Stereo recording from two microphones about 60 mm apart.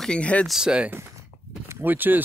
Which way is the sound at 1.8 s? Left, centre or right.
Right.